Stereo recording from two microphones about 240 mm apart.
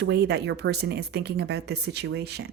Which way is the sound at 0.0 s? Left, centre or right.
Right.